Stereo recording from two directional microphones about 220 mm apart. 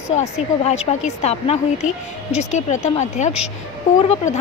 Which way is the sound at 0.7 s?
30° left (ahead or behind).